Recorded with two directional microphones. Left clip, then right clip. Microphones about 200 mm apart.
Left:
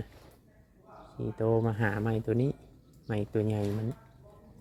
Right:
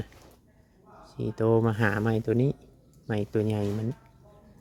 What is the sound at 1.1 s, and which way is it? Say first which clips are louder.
Speech: right 4 dB; 30° right (ahead or behind).